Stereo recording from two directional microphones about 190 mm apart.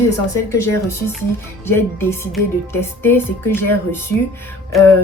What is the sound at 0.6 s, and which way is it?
Music, 15° left (ahead or behind).